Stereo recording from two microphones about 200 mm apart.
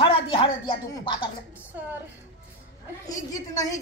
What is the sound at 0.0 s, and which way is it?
Speech, 25° left (ahead or behind).